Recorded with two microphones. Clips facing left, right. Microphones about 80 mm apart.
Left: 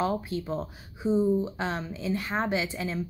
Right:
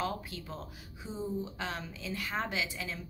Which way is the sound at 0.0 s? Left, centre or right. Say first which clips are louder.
Left 8 dB; left.